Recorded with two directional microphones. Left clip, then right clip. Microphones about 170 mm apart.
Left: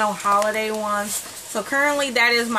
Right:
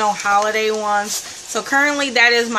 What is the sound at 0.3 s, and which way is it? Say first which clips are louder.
Speech: right 3 dB; 15° right (ahead or behind).